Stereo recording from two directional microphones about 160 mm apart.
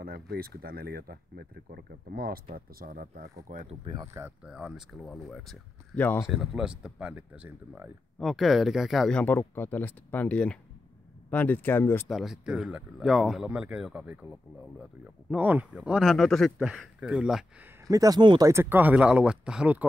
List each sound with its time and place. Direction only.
0.0 s speech: 70° right (ahead or behind)
3.8 s speech: 25° right (ahead or behind)
4.5 s speech: 5° right (ahead or behind); by 6.2 s 10° left (ahead or behind)
6.2 s speech: centre (ahead or behind)
9.2 s speech: 10° left (ahead or behind)
12.1 s speech: centre (ahead or behind)
15.2 s speech: 10° right (ahead or behind)
17.8 s speech: 20° right (ahead or behind)
18.5 s speech: 15° right (ahead or behind)